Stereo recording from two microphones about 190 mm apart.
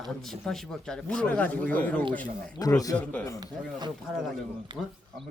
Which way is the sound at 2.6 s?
20° left (ahead or behind).